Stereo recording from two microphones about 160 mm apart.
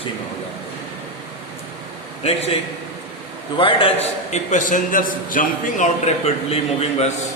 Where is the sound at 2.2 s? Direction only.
40° left (ahead or behind).